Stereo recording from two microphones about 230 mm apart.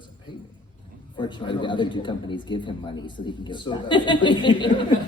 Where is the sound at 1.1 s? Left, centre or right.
Left.